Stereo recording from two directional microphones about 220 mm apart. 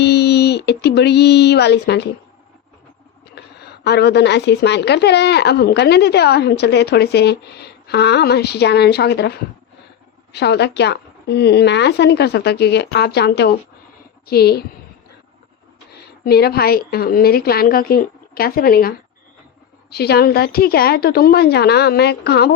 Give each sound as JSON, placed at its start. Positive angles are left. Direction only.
{"t": 0.0, "sound": "a sound", "side_deg": 45}
{"t": 3.3, "sound": "speech", "side_deg": 50}
{"t": 16.2, "sound": "speech", "side_deg": 45}